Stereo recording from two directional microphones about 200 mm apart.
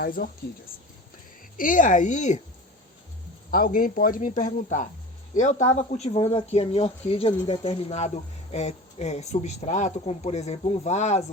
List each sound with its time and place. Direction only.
0.0 s speech: 45° left (ahead or behind)
1.5 s speech: 40° left (ahead or behind)
3.5 s speech: 45° left (ahead or behind)